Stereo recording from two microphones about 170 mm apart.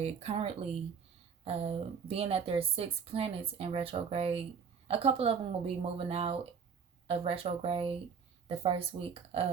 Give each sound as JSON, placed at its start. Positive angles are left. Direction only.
{"t": 0.0, "sound": "a woman's voice", "side_deg": -40}